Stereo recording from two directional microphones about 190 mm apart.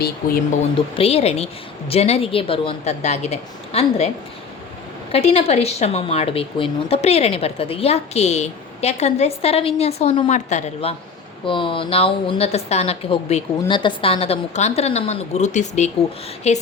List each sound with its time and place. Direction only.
0.6 s a woman's voice: 30° left (ahead or behind)
5.1 s a woman's voice: 35° left (ahead or behind)